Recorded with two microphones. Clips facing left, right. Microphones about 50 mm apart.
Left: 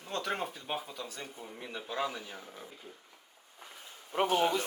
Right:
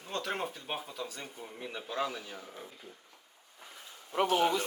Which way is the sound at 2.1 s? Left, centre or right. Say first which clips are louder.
Right 1 dB; centre.